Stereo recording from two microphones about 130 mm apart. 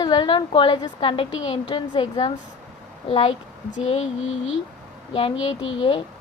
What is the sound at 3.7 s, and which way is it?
Speech, 60° left (ahead or behind).